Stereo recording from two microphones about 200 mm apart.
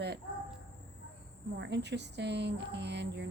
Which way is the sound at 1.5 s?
60° right (ahead or behind).